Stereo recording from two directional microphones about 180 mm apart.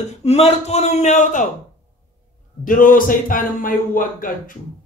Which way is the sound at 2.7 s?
50° left (ahead or behind).